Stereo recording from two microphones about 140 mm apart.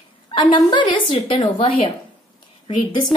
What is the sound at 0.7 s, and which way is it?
A woman's voice, 35° left (ahead or behind).